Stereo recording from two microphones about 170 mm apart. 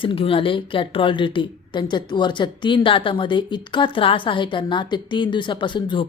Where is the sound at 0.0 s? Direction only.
30° left (ahead or behind).